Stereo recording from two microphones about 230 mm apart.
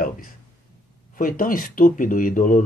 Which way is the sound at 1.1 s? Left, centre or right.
Left.